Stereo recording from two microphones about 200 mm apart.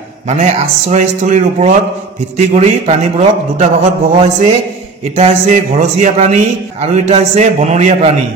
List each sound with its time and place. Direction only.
0.3 s a man's voice: 35° right (ahead or behind)